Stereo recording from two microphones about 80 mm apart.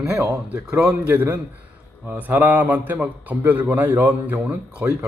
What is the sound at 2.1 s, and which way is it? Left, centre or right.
A man's voice, centre.